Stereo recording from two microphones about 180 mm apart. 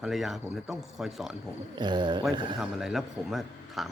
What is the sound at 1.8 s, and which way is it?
Speech, 25° right (ahead or behind).